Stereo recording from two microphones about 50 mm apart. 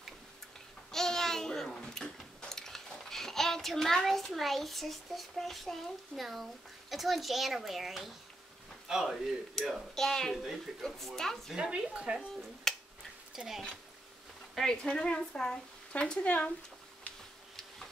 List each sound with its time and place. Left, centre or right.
0.9 s babbling: centre
6.9 s a woman's voice: centre
9.6 s a woman's voice: centre
10.3 s speech: centre
10.8 s a woman's voice: centre
11.5 s a woman's voice: centre
12.7 s finger snapping: centre
13.3 s speech: centre
14.5 s a woman's voice: centre